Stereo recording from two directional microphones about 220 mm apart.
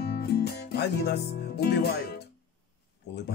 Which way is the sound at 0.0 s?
45° left (ahead or behind).